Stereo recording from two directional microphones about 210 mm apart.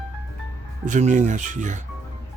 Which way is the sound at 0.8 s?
35° right (ahead or behind).